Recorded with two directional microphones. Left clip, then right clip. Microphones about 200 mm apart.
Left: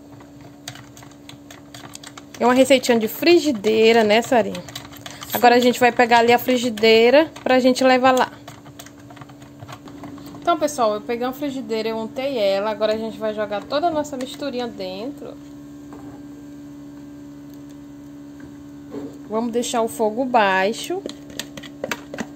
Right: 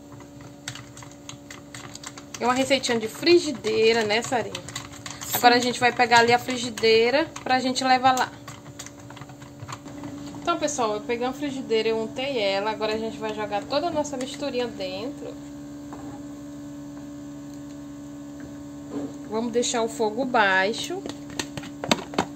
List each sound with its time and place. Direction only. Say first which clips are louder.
2.4 s a woman's voice: left 7 dB; 45° left (ahead or behind)
10.4 s a woman's voice: left 6 dB; 45° left (ahead or behind)
19.3 s speech: left 3 dB; 40° left (ahead or behind)